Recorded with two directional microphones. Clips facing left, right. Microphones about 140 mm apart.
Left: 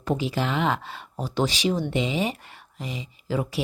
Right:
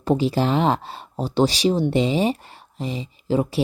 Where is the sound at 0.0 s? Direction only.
30° right (ahead or behind).